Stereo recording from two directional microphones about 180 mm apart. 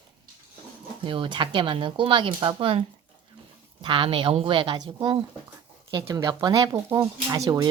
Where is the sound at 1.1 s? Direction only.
30° right (ahead or behind).